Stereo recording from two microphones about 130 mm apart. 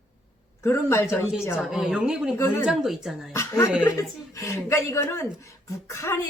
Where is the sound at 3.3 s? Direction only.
25° left (ahead or behind).